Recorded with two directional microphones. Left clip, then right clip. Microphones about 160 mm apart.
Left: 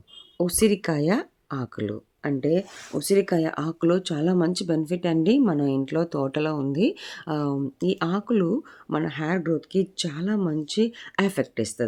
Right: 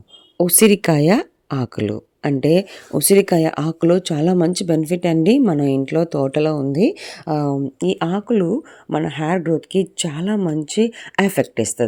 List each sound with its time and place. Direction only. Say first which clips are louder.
0.3 s speech: right 8 dB; 45° right (ahead or behind)